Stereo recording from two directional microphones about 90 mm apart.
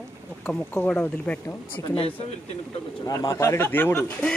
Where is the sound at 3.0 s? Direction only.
40° left (ahead or behind); by 4.2 s 25° left (ahead or behind).